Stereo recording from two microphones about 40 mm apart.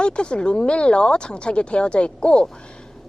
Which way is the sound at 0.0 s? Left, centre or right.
Left.